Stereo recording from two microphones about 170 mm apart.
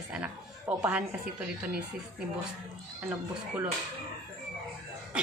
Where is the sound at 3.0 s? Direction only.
10° right (ahead or behind).